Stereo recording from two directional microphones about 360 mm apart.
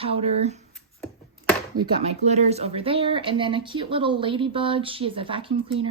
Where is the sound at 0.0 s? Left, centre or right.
Centre.